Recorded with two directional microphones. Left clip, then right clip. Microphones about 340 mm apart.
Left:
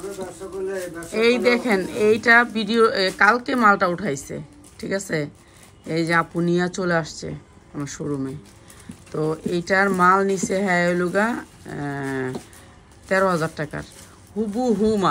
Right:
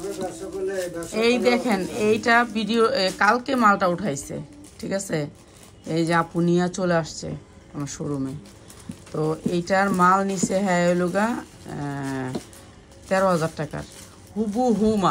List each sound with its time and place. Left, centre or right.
1.1 s a woman's voice: centre